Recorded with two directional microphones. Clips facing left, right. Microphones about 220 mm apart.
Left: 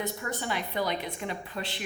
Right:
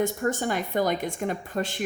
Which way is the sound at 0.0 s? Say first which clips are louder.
Right 8 dB; 45° right (ahead or behind).